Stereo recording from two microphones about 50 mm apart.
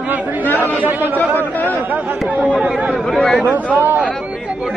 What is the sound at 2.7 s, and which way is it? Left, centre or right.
Speech, centre.